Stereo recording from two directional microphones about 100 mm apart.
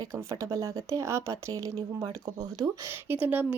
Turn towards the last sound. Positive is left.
turn(degrees=-15)  # may be behind; listen again after turning